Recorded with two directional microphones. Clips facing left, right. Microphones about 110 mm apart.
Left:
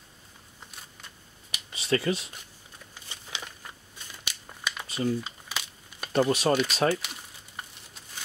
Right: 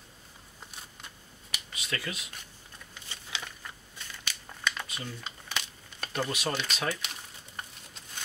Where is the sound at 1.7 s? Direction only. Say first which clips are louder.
Left 11 dB; 30° left (ahead or behind).